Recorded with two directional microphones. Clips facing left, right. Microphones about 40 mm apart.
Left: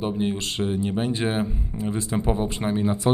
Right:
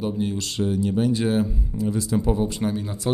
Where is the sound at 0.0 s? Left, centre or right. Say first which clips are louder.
Left 1 dB; left.